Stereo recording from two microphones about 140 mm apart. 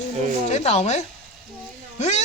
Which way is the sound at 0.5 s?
55° left (ahead or behind).